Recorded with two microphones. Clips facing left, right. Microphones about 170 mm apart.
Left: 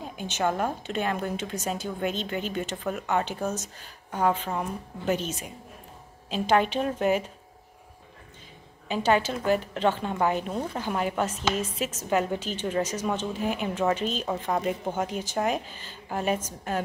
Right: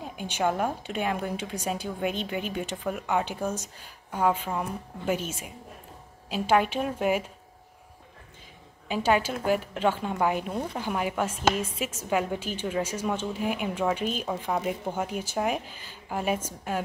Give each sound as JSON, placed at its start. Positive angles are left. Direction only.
{"t": 0.0, "sound": "a woman's voice", "side_deg": -10}
{"t": 8.8, "sound": "a woman's voice", "side_deg": -10}